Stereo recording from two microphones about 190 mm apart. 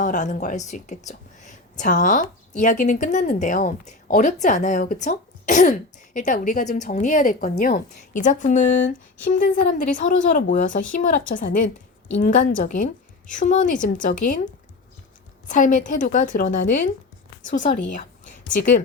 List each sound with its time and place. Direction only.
0.0 s a woman's voice: 40° left (ahead or behind)
15.4 s a woman's voice: 45° left (ahead or behind)